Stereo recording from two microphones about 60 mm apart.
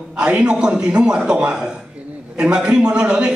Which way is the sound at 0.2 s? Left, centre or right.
Centre.